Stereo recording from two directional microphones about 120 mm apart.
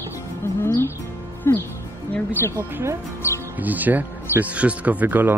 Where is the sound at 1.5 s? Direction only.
20° left (ahead or behind).